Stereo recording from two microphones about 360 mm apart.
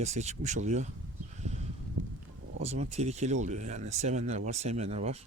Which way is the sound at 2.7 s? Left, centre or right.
Centre.